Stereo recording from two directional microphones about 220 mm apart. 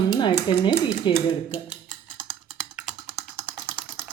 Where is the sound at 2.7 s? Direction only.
5° right (ahead or behind).